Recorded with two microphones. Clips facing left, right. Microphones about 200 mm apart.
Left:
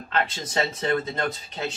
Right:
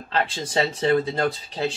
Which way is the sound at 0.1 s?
30° right (ahead or behind).